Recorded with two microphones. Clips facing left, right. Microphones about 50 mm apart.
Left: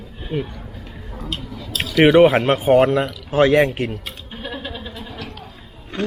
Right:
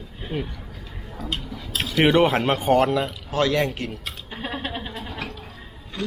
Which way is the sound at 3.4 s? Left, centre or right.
Left.